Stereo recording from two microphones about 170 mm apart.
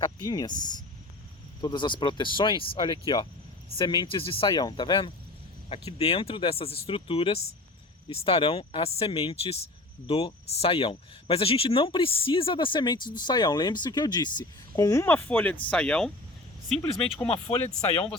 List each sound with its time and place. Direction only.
0.0 s speech: 25° left (ahead or behind); by 17.1 s 5° left (ahead or behind)